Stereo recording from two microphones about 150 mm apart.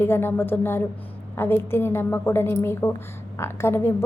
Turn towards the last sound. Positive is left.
turn(degrees=15)  # may be behind; listen again after turning